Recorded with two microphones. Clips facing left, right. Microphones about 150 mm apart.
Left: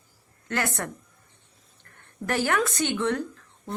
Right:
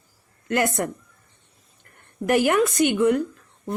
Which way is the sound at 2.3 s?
15° right (ahead or behind).